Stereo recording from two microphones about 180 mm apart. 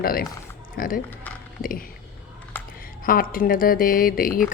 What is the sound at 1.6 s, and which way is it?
A woman's voice, 50° left (ahead or behind).